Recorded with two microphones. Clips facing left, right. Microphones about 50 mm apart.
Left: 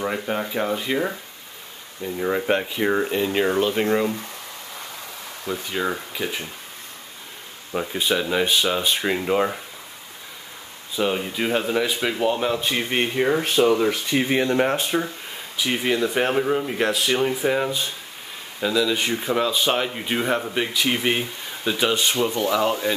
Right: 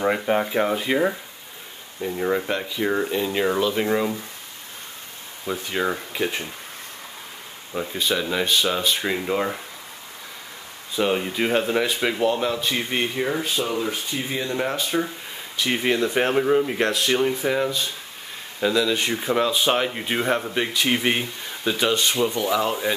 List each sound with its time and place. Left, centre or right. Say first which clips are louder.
0.0 s speech: right 4 dB; centre
2.8 s speech: left 1 dB; centre
3.5 s speech: left 1 dB; centre
5.5 s speech: right 1 dB; centre
7.8 s speech: left 1 dB; centre
11.0 s speech: right 1 dB; centre
13.4 s speech: left 6 dB; left
13.9 s speech: left 6 dB; left
14.6 s speech: left 4 dB; left
15.5 s speech: even; centre
18.6 s speech: even; centre